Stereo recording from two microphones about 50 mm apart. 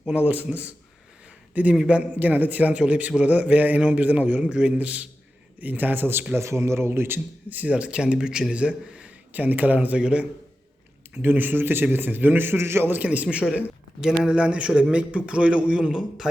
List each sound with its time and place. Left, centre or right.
0.1 s a man's voice: right
6.3 s speech: right
7.5 s a man's voice: right
11.1 s a man's voice: right
12.9 s a man's voice: right
14.0 s a man's voice: centre